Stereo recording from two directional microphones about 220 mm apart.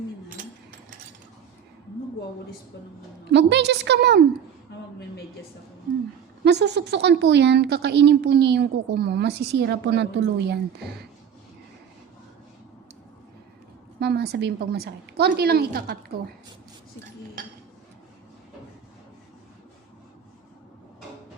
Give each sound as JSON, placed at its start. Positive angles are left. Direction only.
{"t": 3.3, "sound": "a woman's voice", "side_deg": -50}
{"t": 6.4, "sound": "a woman's voice", "side_deg": -50}
{"t": 14.0, "sound": "a woman's voice", "side_deg": -50}